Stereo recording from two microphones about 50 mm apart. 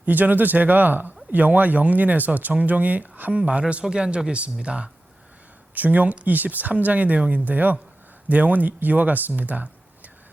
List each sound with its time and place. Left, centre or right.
0.0 s speech: right
5.7 s speech: right